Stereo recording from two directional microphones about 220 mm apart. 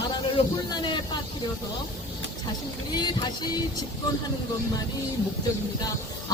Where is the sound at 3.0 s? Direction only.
20° left (ahead or behind).